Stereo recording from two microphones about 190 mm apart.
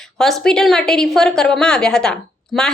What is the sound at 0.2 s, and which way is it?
A woman's voice, centre (ahead or behind).